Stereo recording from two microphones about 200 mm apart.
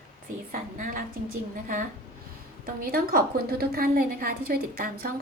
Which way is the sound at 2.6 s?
45° right (ahead or behind).